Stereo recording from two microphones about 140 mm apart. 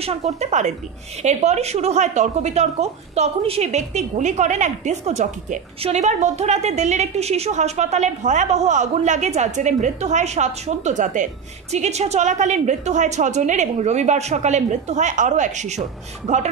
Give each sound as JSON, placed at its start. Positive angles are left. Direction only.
{"t": 0.0, "sound": "speech", "side_deg": -50}